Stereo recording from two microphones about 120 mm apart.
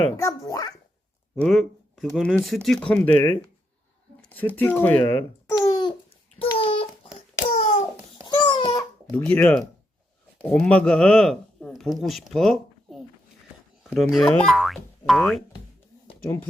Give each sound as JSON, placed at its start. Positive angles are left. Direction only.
{"t": 0.2, "sound": "a child's voice", "side_deg": 30}
{"t": 1.4, "sound": "speech", "side_deg": 5}
{"t": 4.2, "sound": "babbling", "side_deg": 15}
{"t": 6.4, "sound": "babbling", "side_deg": 50}
{"t": 9.1, "sound": "speech", "side_deg": 10}
{"t": 16.2, "sound": "speech", "side_deg": 20}